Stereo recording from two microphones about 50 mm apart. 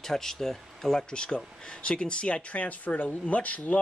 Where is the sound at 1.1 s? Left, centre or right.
Centre.